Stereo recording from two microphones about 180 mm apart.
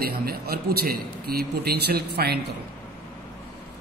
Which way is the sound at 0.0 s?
55° right (ahead or behind).